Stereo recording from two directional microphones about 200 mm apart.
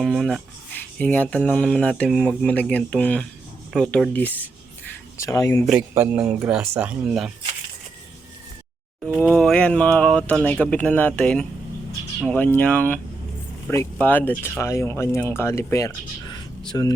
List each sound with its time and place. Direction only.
0.0 s speech: centre (ahead or behind)
5.6 s speech: 5° right (ahead or behind)
9.1 s speech: 5° left (ahead or behind); by 16.9 s 20° left (ahead or behind)